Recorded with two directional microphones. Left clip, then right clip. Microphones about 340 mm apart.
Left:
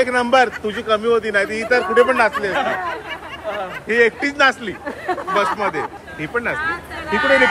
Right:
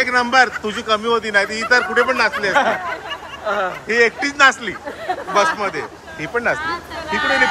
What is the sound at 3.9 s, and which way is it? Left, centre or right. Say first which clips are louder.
A man's voice: left 1 dB; centre.